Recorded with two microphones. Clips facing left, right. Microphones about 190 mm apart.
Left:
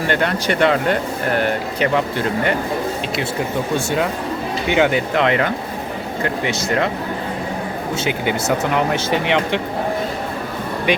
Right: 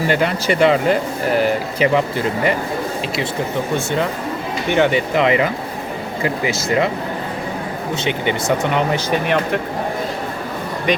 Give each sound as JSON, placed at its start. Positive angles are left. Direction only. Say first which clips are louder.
{"t": 0.1, "sound": "speech", "louder": "even", "side_deg": -5}
{"t": 4.7, "sound": "speech", "louder": "right 1 dB", "side_deg": 10}
{"t": 5.1, "sound": "speech", "louder": "right 1 dB", "side_deg": -5}
{"t": 7.9, "sound": "speech", "louder": "right 1 dB", "side_deg": 5}
{"t": 9.0, "sound": "speech", "louder": "even", "side_deg": 85}